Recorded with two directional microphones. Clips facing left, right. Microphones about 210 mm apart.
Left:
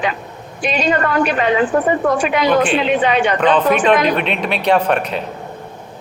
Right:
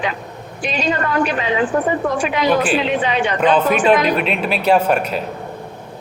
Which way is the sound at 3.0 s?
60° left (ahead or behind).